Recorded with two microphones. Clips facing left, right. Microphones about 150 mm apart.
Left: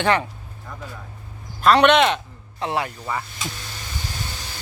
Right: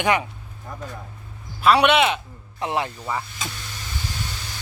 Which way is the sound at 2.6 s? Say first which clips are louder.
Even; 20° right (ahead or behind).